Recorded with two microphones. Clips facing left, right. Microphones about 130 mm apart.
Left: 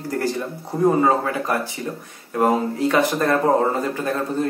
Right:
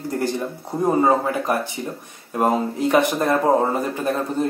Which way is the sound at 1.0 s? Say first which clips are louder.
Right 1 dB; 20° right (ahead or behind).